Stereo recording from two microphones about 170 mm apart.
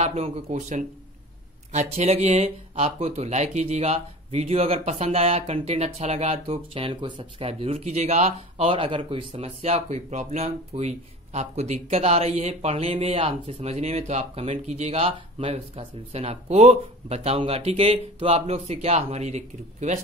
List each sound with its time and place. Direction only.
0.0 s speech: 35° right (ahead or behind)